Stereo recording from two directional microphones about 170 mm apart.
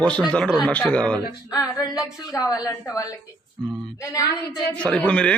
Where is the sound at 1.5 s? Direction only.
20° left (ahead or behind).